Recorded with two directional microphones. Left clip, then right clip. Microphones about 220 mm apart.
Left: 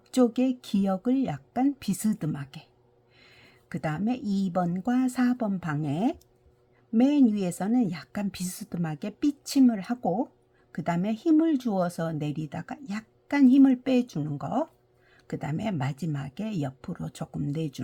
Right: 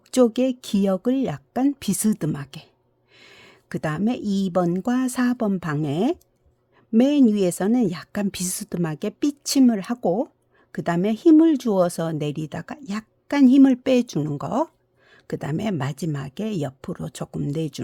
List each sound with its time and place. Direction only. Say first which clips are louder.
0.1 s a woman's voice: right 6 dB; 40° right (ahead or behind)